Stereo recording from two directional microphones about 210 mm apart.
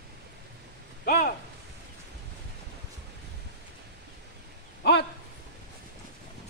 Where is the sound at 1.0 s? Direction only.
45° left (ahead or behind).